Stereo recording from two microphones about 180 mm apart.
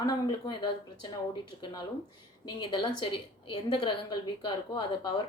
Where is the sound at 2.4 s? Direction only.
25° left (ahead or behind).